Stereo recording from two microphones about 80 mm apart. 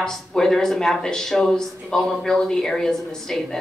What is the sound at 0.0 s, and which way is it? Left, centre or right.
Speech, centre.